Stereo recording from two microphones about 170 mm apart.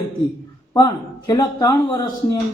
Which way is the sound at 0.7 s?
25° left (ahead or behind).